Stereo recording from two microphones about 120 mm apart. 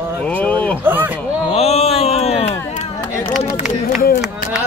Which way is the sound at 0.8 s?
15° right (ahead or behind).